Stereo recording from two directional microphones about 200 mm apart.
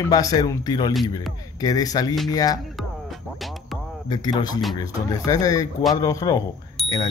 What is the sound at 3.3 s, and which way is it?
Music, centre (ahead or behind).